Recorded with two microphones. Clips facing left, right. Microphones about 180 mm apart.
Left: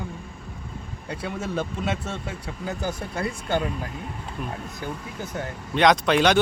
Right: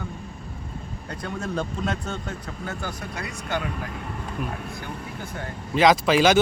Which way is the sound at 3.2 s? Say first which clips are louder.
Left 4 dB; 30° left (ahead or behind).